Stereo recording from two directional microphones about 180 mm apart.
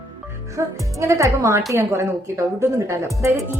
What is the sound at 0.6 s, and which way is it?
A woman's voice, 15° right (ahead or behind).